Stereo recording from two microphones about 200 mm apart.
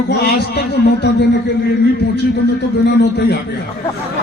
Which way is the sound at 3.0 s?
55° left (ahead or behind).